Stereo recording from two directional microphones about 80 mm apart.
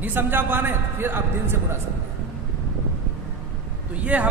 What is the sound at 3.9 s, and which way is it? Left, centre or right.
Speech, centre.